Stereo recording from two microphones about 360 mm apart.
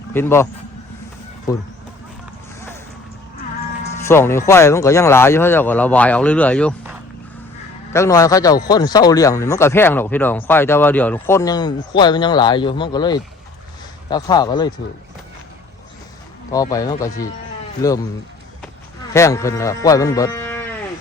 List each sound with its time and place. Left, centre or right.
0.1 s speech: centre
1.5 s speech: centre
3.9 s speech: centre
7.9 s speech: centre
16.5 s speech: centre
19.1 s speech: centre